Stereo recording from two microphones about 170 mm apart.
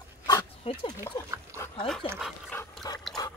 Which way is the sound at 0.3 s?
25° left (ahead or behind).